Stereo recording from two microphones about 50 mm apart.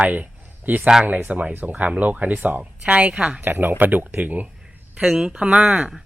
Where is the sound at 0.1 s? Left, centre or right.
Right.